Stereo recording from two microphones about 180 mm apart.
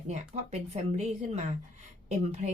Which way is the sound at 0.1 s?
40° right (ahead or behind).